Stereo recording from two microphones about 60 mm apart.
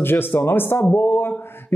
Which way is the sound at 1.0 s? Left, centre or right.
Left.